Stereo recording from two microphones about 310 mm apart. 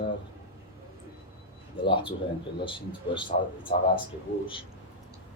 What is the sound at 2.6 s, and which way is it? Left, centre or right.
Speech, centre.